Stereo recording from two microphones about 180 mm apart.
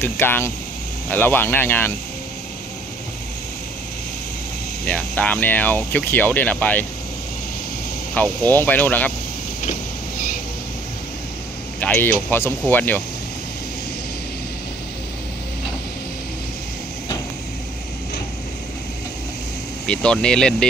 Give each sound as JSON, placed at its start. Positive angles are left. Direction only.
{"t": 0.0, "sound": "speech", "side_deg": 15}
{"t": 4.8, "sound": "speech", "side_deg": 10}
{"t": 8.1, "sound": "speech", "side_deg": 10}
{"t": 9.6, "sound": "vehicle", "side_deg": 45}
{"t": 11.8, "sound": "speech", "side_deg": 10}
{"t": 19.9, "sound": "speech", "side_deg": 5}